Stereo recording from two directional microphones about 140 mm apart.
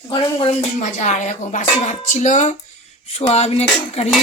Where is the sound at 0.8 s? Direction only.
55° left (ahead or behind).